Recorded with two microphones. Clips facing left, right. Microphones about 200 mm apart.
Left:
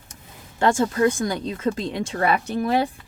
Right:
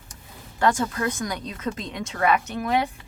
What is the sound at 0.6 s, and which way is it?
A woman's voice, 25° left (ahead or behind).